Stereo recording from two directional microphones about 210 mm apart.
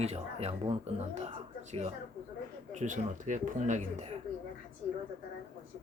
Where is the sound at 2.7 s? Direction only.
35° right (ahead or behind).